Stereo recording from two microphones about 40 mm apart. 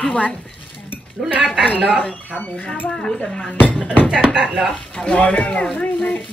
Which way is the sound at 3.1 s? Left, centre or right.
Left.